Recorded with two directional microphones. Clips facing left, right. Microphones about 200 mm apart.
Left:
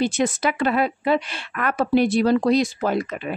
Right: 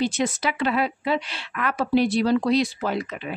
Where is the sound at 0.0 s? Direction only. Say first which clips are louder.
Left 3 dB; 50° left (ahead or behind).